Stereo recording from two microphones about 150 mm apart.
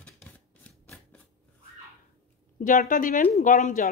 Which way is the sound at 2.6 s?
60° left (ahead or behind).